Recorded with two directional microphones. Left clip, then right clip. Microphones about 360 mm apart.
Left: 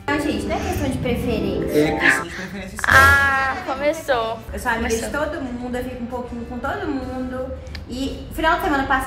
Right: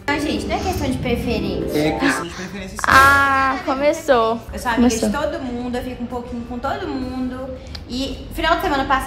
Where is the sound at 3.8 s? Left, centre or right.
Centre.